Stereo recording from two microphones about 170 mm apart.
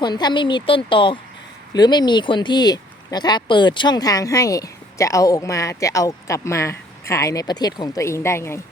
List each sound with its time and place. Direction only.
0.0 s speech: 25° left (ahead or behind)